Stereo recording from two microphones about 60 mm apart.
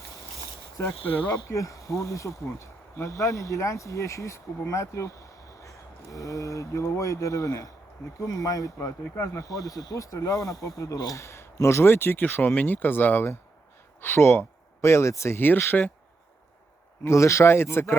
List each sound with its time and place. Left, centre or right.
0.8 s speech: left
1.3 s speech: left
11.2 s speech: left
11.9 s speech: left
14.0 s speech: left
15.4 s speech: left
17.0 s speech: left